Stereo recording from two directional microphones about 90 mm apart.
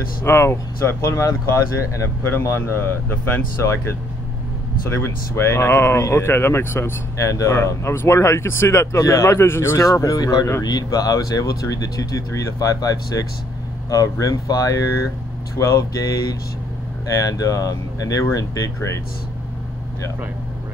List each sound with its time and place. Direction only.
0.2 s speech: 30° left (ahead or behind)
9.8 s speech: 40° left (ahead or behind)